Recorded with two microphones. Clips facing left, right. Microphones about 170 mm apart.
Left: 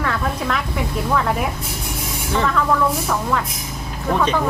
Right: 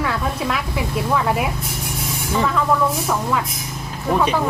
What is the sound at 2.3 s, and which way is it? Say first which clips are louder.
Speech: even; 5° right (ahead or behind).